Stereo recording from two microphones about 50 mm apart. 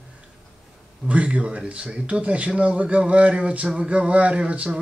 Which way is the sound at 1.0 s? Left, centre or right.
Right.